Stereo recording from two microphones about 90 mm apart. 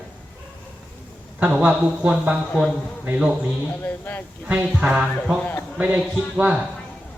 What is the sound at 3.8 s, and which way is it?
Speech, 20° left (ahead or behind).